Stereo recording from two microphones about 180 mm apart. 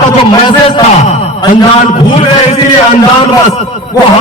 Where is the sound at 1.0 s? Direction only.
35° left (ahead or behind).